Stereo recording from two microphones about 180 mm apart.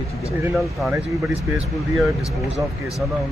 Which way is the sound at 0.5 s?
Centre (ahead or behind).